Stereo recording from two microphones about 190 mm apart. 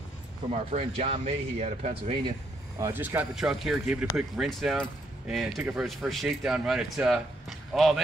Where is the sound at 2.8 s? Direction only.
10° right (ahead or behind).